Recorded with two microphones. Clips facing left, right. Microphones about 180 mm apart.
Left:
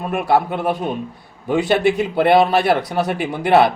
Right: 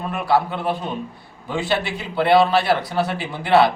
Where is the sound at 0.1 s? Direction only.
50° left (ahead or behind).